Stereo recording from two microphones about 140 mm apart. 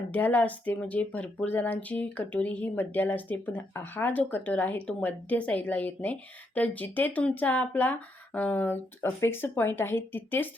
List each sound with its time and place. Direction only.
0.1 s speech: 15° left (ahead or behind)